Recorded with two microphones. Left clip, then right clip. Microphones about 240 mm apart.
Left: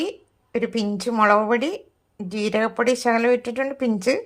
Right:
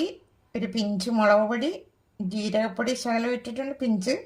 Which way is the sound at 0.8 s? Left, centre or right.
Centre.